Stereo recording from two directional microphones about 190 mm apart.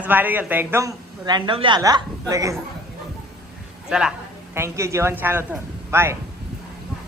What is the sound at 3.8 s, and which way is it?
Speech, 5° right (ahead or behind).